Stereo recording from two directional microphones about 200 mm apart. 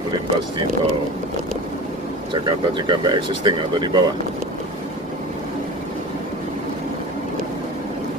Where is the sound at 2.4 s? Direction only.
25° right (ahead or behind).